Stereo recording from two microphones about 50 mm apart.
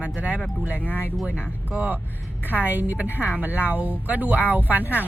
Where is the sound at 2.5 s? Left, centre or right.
Right.